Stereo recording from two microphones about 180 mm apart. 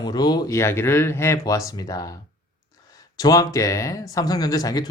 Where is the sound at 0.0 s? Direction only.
20° left (ahead or behind).